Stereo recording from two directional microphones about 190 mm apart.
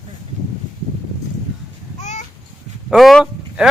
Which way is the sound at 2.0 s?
40° left (ahead or behind).